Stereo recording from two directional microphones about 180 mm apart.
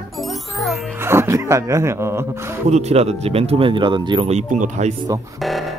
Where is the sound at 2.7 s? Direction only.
35° right (ahead or behind).